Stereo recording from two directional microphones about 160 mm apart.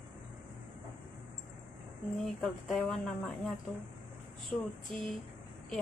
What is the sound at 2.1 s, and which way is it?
Speech, centre (ahead or behind).